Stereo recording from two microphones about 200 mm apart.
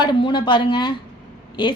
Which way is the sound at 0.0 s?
25° left (ahead or behind).